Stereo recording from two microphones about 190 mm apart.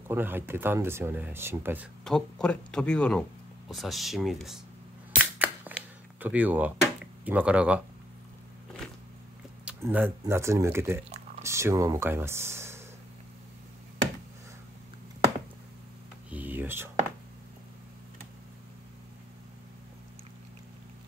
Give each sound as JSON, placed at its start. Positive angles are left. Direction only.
{"t": 0.1, "sound": "speech", "side_deg": -10}
{"t": 2.0, "sound": "speech", "side_deg": 5}
{"t": 5.2, "sound": "cap gun", "side_deg": -10}
{"t": 7.2, "sound": "speech", "side_deg": -5}
{"t": 9.7, "sound": "speech", "side_deg": -10}
{"t": 16.3, "sound": "a sound", "side_deg": -10}